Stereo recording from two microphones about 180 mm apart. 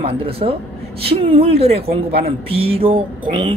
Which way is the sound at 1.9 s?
60° right (ahead or behind).